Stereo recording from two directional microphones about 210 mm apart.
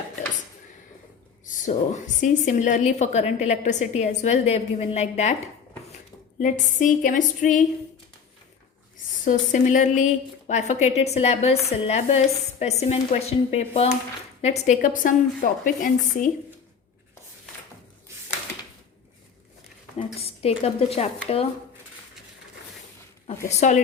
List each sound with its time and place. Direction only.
1.5 s a woman's voice: 35° left (ahead or behind)
6.4 s a woman's voice: 35° left (ahead or behind)
9.2 s a woman's voice: 35° left (ahead or behind)
20.2 s a woman's voice: 30° left (ahead or behind)
23.6 s a woman's voice: 35° left (ahead or behind)